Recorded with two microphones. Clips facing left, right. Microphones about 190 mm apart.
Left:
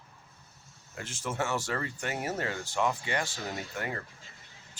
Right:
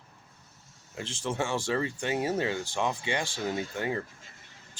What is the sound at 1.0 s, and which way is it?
Speech, 30° right (ahead or behind).